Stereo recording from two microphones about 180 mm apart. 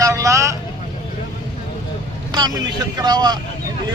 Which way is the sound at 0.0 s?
20° right (ahead or behind).